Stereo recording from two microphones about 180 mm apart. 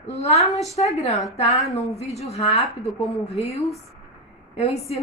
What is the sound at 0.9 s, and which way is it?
A woman's voice, 40° left (ahead or behind).